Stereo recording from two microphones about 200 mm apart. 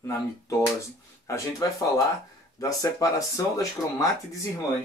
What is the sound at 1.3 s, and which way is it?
Speech, 15° left (ahead or behind).